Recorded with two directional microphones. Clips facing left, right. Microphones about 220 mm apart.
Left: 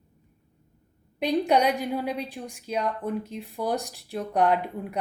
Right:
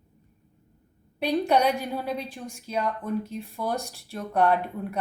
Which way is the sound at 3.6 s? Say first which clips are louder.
Left 3 dB; 15° left (ahead or behind).